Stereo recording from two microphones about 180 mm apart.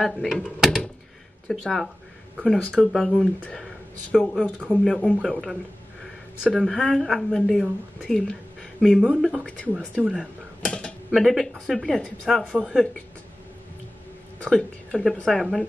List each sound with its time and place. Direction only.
0.0 s speech: centre (ahead or behind)
9.5 s speech: 5° left (ahead or behind)
14.4 s speech: 5° left (ahead or behind)